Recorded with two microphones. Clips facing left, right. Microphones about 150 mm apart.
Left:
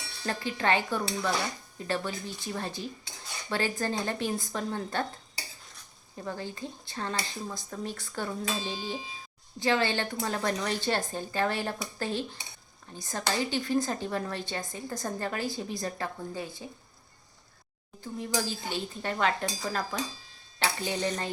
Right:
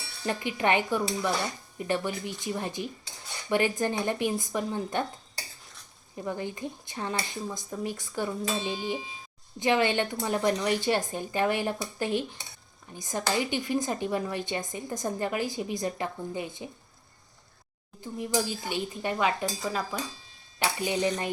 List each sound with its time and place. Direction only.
0.2 s speech: 15° right (ahead or behind)
6.1 s speech: 15° right (ahead or behind)
18.0 s speech: 15° right (ahead or behind)